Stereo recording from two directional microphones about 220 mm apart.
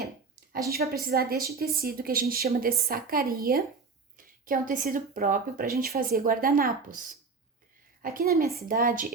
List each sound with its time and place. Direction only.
0.7 s a woman's voice: 45° right (ahead or behind)
8.0 s a woman's voice: 40° right (ahead or behind)